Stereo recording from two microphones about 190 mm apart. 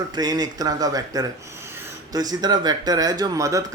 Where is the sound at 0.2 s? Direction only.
20° right (ahead or behind).